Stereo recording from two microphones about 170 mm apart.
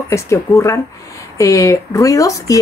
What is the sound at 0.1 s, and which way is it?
A woman's voice, 15° left (ahead or behind).